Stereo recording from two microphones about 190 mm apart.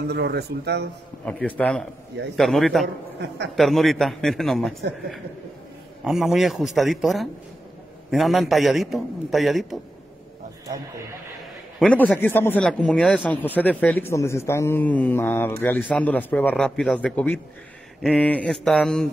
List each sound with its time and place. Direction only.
0.1 s speech: 60° right (ahead or behind)
1.2 s a man's voice: 5° left (ahead or behind)
3.2 s speech: 65° right (ahead or behind)
3.5 s a man's voice: centre (ahead or behind)
6.0 s a man's voice: centre (ahead or behind)
11.8 s a man's voice: 5° left (ahead or behind)